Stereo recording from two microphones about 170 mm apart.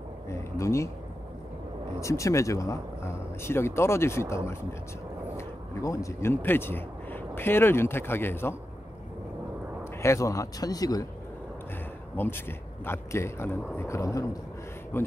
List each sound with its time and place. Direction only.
0.3 s a sound: 15° left (ahead or behind)
2.0 s a man's voice: 20° left (ahead or behind)
5.8 s a man's voice: 20° left (ahead or behind)
10.0 s speech: 20° left (ahead or behind)
12.2 s a man's voice: 15° left (ahead or behind)